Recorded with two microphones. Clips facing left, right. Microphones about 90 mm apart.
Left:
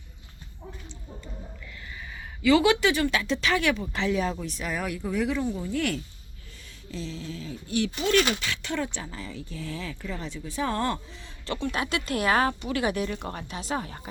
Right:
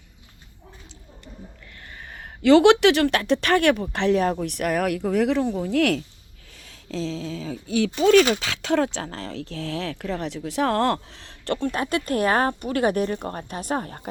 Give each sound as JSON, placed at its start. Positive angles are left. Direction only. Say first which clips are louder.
{"t": 2.0, "sound": "speech", "louder": "right 4 dB", "side_deg": -50}
{"t": 6.7, "sound": "a sound", "louder": "right 7 dB", "side_deg": -90}
{"t": 8.3, "sound": "speech", "louder": "right 7 dB", "side_deg": -90}